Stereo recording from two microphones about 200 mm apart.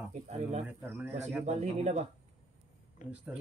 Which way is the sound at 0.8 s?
10° right (ahead or behind).